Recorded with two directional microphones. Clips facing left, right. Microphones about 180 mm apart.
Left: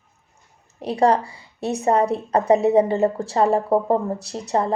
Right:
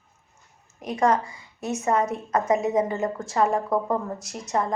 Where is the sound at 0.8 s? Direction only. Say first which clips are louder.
Left 4 dB; 35° left (ahead or behind).